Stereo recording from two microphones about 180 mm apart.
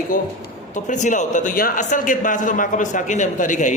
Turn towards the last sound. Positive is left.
turn(degrees=45)  # may be behind; listen again after turning